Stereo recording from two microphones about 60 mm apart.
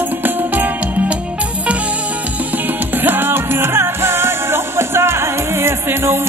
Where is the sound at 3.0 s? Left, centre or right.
Right.